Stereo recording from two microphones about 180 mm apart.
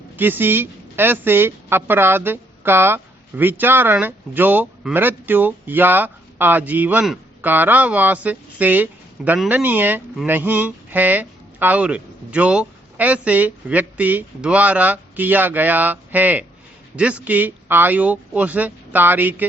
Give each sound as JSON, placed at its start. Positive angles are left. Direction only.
{"t": 0.2, "sound": "a woman's voice", "side_deg": -10}